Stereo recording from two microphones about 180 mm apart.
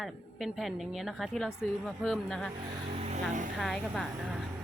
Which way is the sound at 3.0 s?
40° right (ahead or behind).